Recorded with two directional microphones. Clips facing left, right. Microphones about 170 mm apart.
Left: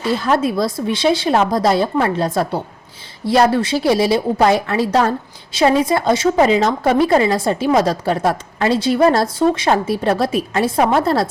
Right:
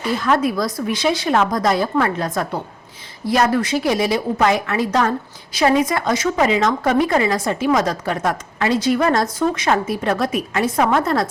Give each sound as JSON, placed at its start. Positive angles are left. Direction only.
{"t": 0.0, "sound": "a woman's voice", "side_deg": 30}